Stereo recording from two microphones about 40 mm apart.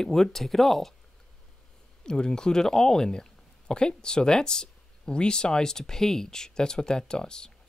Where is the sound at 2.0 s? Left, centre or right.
Centre.